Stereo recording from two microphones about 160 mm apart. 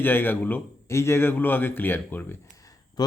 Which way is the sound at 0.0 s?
10° left (ahead or behind).